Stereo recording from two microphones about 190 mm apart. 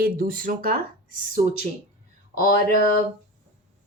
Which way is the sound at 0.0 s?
50° right (ahead or behind).